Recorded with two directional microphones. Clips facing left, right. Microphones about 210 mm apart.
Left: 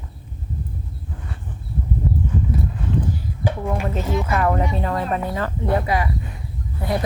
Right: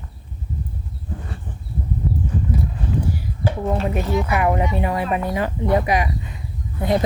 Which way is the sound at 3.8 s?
15° right (ahead or behind).